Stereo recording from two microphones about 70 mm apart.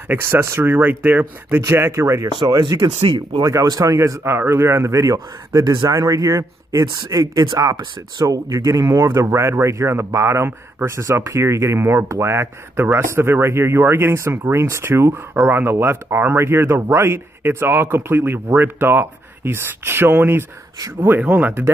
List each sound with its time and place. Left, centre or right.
0.1 s speech: right
1.6 s speech: right
2.4 s speech: right
3.6 s speech: right
5.6 s speech: right
5.9 s speech: right
6.8 s speech: right